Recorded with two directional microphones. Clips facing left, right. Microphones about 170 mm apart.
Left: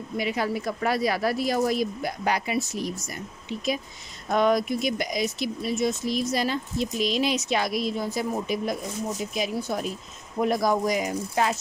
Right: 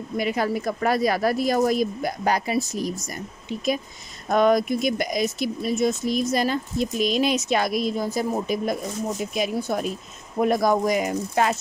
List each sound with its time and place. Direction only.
0.2 s speech: 50° right (ahead or behind)
9.3 s speech: 55° right (ahead or behind)